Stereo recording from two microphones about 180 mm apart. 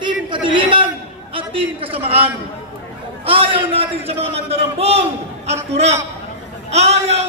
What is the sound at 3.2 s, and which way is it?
A man's voice, 30° right (ahead or behind).